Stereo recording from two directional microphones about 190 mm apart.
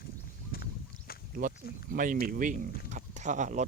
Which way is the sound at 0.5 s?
55° left (ahead or behind).